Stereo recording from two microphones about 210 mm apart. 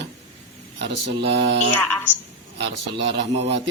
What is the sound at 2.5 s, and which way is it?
Speech, 55° right (ahead or behind).